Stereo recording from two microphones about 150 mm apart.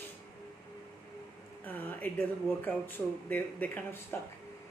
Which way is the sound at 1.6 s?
10° left (ahead or behind).